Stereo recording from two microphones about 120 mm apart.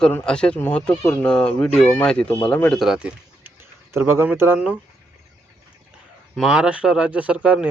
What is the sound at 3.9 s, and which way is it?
Speech, 20° right (ahead or behind).